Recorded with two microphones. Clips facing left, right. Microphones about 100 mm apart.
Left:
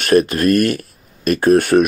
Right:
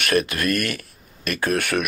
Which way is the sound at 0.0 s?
35° left (ahead or behind).